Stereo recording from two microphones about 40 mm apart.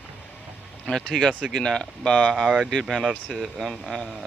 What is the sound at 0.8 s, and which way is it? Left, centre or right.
Speech, centre.